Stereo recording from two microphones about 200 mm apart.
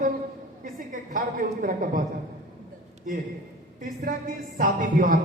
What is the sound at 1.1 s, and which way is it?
Speech, 45° right (ahead or behind).